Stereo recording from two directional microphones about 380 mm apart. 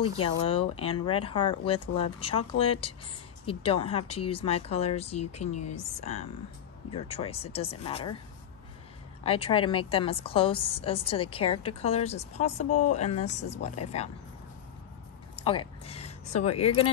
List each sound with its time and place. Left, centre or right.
0.4 s a woman's voice: centre
9.2 s a woman's voice: centre
12.6 s speech: left
12.9 s a woman's voice: centre
15.3 s a sound: centre
16.5 s a woman's voice: centre